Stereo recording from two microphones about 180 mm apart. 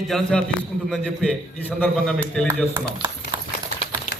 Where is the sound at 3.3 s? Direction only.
25° right (ahead or behind).